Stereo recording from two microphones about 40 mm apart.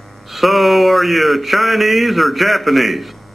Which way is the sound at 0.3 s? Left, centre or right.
Centre.